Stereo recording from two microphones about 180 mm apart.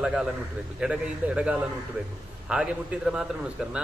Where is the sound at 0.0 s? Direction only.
5° right (ahead or behind).